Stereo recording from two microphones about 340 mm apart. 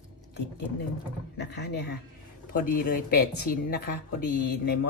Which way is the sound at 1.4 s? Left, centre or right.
Left.